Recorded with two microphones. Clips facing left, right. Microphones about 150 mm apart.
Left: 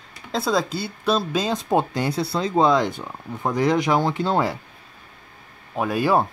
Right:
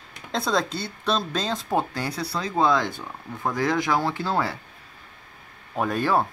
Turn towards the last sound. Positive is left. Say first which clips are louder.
# left 3 dB
turn(degrees=10)  # may be behind; listen again after turning